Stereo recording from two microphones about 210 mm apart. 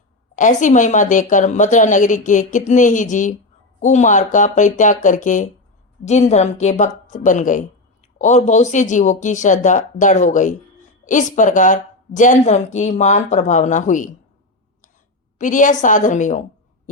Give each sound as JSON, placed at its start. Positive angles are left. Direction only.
{"t": 0.3, "sound": "a woman's voice", "side_deg": 35}
{"t": 15.4, "sound": "a woman's voice", "side_deg": 40}